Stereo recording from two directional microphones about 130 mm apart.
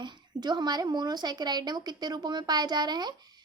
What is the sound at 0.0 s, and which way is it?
A woman's voice, 35° right (ahead or behind).